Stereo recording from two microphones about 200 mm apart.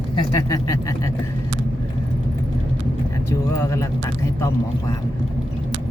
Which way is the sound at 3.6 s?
15° left (ahead or behind).